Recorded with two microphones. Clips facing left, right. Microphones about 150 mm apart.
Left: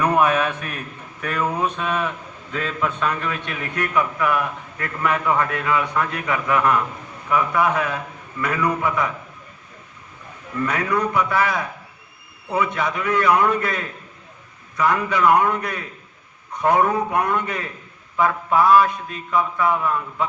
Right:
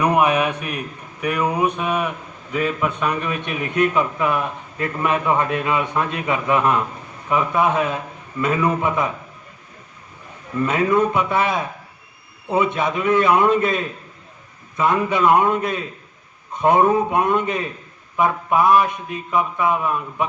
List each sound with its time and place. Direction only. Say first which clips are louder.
0.0 s speech: right 1 dB; 15° right (ahead or behind)
7.3 s mantra: right 1 dB; 20° right (ahead or behind)
10.6 s mantra: right 4 dB; 20° right (ahead or behind)